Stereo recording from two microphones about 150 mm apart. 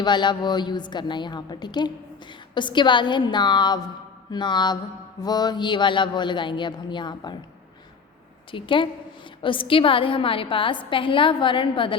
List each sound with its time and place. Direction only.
0.0 s a woman's voice: 30° left (ahead or behind)
8.4 s a woman's voice: 35° left (ahead or behind)